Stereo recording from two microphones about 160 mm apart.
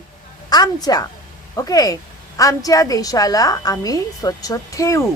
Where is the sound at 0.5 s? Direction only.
25° left (ahead or behind).